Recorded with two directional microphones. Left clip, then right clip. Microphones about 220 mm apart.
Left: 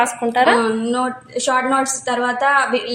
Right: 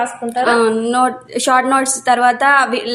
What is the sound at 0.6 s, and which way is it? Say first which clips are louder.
A woman's voice: right 5 dB; 50° right (ahead or behind).